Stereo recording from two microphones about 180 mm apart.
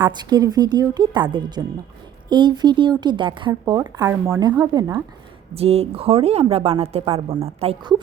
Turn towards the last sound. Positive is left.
turn(degrees=-35)  # may be behind; listen again after turning